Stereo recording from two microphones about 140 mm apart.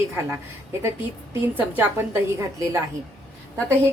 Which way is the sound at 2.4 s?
20° right (ahead or behind).